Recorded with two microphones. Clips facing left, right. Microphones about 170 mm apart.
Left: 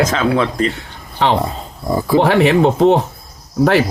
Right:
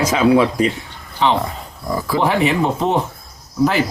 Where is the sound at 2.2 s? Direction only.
70° left (ahead or behind).